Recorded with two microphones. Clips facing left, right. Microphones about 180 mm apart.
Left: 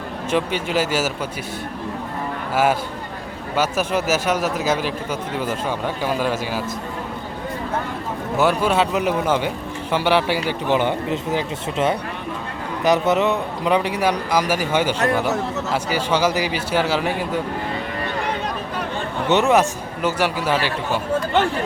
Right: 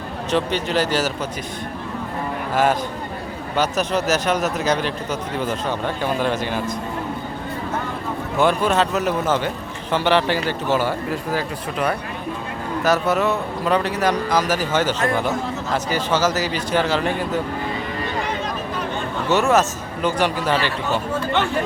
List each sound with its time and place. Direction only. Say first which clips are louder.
0.3 s a man's voice: even; 10° left (ahead or behind)
3.5 s a man's voice: even; 10° left (ahead or behind)
8.4 s a man's voice: even; 10° left (ahead or behind)
19.3 s a man's voice: left 1 dB; 15° left (ahead or behind)